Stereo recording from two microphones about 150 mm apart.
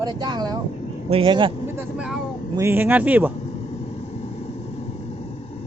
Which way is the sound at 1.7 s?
5° right (ahead or behind).